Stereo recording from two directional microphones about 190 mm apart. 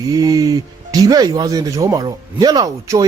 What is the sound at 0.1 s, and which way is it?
Speech, 20° right (ahead or behind).